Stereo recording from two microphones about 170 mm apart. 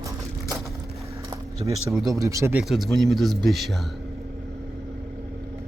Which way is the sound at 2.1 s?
20° right (ahead or behind).